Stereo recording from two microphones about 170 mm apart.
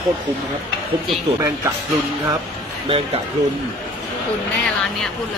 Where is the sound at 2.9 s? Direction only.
35° right (ahead or behind).